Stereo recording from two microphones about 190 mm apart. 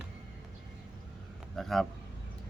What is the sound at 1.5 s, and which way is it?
Speech, centre (ahead or behind).